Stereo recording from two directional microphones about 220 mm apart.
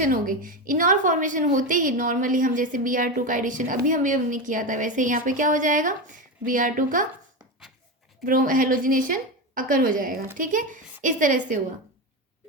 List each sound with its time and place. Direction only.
0.0 s a woman's voice: 40° right (ahead or behind)
8.2 s a woman's voice: 40° right (ahead or behind)